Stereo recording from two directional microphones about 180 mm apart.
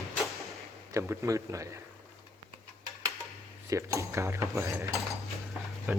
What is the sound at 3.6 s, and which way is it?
Speech, 15° right (ahead or behind).